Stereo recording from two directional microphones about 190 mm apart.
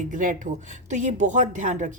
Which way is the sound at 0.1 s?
45° right (ahead or behind).